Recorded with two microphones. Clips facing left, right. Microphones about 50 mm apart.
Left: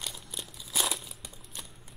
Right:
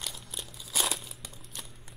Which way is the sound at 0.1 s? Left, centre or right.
Centre.